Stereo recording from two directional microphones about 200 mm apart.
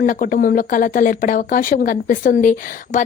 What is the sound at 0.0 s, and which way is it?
Speech, 40° left (ahead or behind).